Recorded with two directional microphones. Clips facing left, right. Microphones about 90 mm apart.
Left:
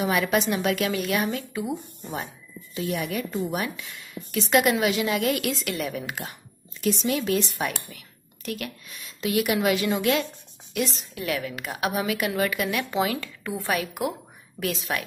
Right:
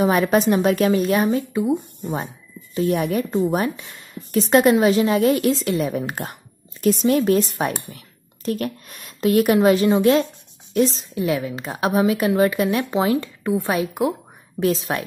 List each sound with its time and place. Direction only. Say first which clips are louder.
0.0 s speech: right 6 dB; 35° right (ahead or behind); by 2.3 s 15° right (ahead or behind)
2.7 s speech: right 8 dB; 40° right (ahead or behind)